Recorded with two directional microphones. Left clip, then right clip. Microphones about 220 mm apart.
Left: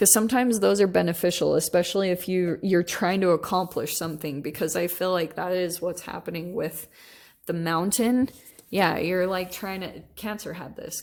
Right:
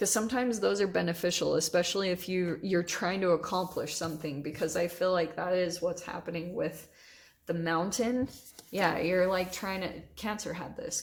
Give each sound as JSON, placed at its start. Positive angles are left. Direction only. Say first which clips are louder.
{"t": 0.0, "sound": "a woman's voice", "louder": "left 8 dB", "side_deg": 45}